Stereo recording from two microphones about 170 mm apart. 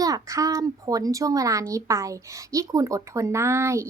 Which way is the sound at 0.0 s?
20° right (ahead or behind).